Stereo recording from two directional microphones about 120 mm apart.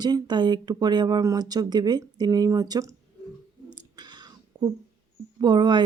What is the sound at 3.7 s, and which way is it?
Whispering, 35° right (ahead or behind).